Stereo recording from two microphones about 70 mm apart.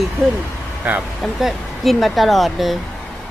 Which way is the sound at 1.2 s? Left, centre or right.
Centre.